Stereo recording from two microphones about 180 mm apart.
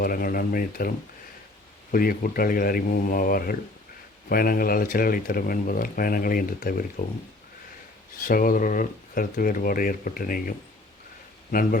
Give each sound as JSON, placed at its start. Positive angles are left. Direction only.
{"t": 0.0, "sound": "speech", "side_deg": 50}
{"t": 1.9, "sound": "speech", "side_deg": 50}
{"t": 8.2, "sound": "speech", "side_deg": 50}